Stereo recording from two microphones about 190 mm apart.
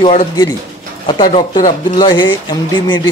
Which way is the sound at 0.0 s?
30° left (ahead or behind).